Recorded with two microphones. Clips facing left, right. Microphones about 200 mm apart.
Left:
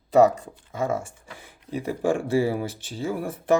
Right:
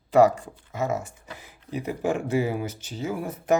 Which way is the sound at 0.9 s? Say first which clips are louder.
Left 1 dB; 30° left (ahead or behind).